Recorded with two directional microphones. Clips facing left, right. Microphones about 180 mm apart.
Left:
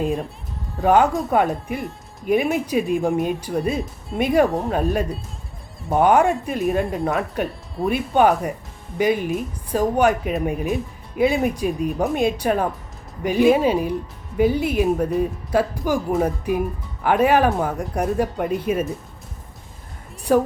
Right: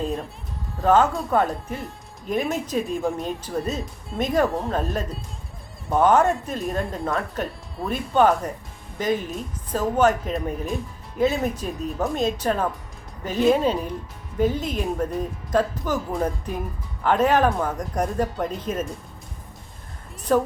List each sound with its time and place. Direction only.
0.0 s speech: 10° left (ahead or behind)
20.3 s speech: 10° left (ahead or behind)